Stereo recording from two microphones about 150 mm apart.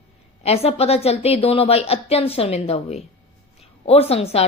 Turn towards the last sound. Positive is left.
turn(degrees=40)  # may be behind; listen again after turning